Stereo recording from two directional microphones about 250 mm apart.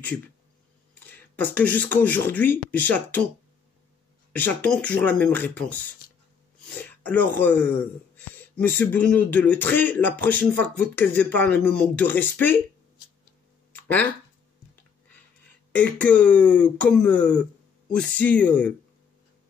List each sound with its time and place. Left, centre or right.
0.9 s speech: centre
4.3 s speech: centre
6.8 s throat clearing: centre
7.3 s speech: centre
15.7 s speech: centre